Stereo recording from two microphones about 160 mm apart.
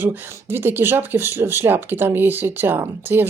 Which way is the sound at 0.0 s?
15° right (ahead or behind).